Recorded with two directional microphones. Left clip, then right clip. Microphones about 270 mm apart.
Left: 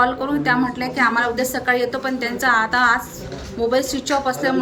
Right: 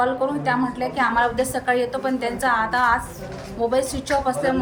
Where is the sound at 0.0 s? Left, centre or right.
Centre.